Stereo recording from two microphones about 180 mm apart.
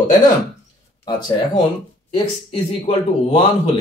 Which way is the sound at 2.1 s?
30° left (ahead or behind).